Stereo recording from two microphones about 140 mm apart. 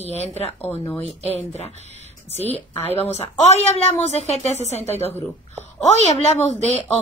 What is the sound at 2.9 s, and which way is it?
A woman's voice, 50° left (ahead or behind).